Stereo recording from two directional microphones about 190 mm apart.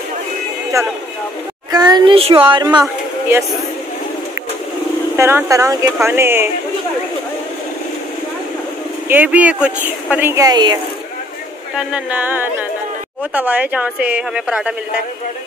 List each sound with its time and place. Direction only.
0.7 s speech: 15° right (ahead or behind)
5.1 s speech: 15° right (ahead or behind)
9.1 s speech: 10° right (ahead or behind)
11.7 s speech: 5° right (ahead or behind)